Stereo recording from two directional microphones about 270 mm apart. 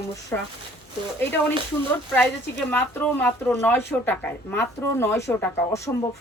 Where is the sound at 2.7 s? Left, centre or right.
Centre.